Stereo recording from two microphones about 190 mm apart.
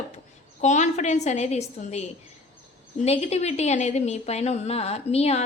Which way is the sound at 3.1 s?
35° left (ahead or behind).